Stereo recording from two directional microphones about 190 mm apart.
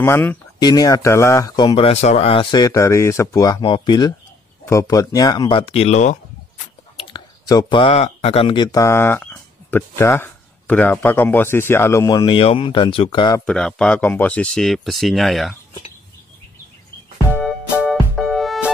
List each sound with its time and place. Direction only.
0.0 s speech: 10° left (ahead or behind)
13.5 s speech: 5° left (ahead or behind)
17.3 s music: centre (ahead or behind)